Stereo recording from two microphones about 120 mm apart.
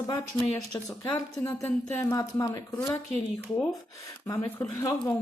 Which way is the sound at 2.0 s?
30° left (ahead or behind).